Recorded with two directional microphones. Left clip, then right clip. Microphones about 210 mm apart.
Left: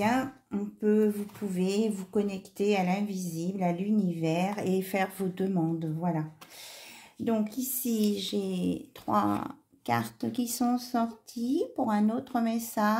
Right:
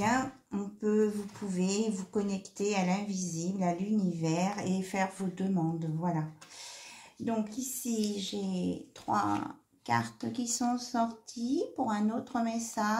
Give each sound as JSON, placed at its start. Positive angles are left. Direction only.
{"t": 0.0, "sound": "speech", "side_deg": 40}
{"t": 7.2, "sound": "speech", "side_deg": 45}